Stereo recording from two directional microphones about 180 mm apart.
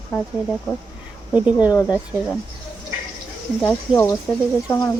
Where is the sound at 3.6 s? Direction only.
10° left (ahead or behind).